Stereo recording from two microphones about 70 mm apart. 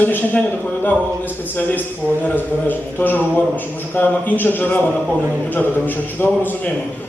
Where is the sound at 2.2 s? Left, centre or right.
Left.